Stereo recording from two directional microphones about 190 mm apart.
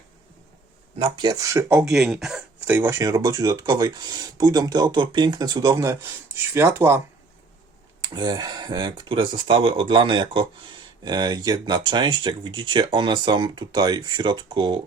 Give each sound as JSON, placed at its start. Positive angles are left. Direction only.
{"t": 0.9, "sound": "speech", "side_deg": -25}
{"t": 8.0, "sound": "speech", "side_deg": -20}